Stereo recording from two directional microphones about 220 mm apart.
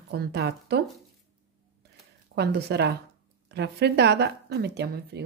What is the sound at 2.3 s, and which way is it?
Speech, 50° right (ahead or behind).